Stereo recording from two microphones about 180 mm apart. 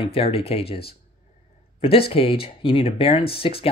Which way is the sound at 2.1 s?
30° left (ahead or behind).